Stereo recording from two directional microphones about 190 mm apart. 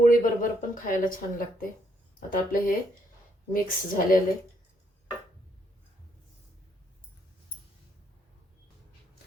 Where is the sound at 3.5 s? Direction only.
50° left (ahead or behind).